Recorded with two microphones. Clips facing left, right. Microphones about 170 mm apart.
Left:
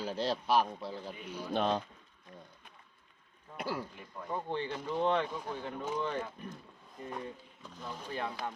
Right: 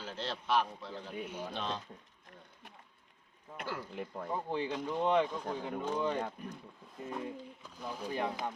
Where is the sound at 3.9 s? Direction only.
70° right (ahead or behind).